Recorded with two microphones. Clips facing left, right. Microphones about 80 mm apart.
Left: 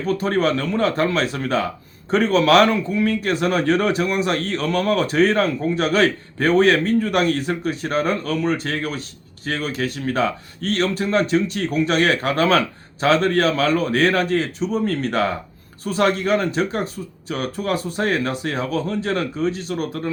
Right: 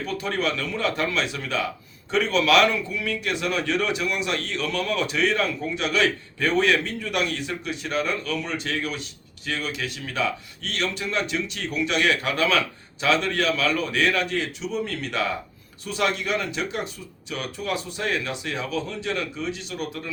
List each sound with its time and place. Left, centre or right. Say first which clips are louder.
0.0 s speech: left 7 dB; left